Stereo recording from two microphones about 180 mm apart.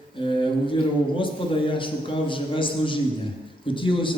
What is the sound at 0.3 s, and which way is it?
A man's voice, 25° left (ahead or behind).